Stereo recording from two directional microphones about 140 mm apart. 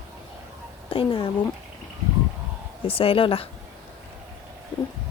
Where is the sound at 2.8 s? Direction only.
40° left (ahead or behind).